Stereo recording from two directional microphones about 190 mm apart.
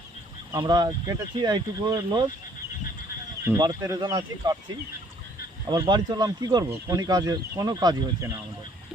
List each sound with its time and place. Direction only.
0.5 s speech: 20° right (ahead or behind)
3.6 s speech: 20° right (ahead or behind)
5.6 s speech: 25° right (ahead or behind)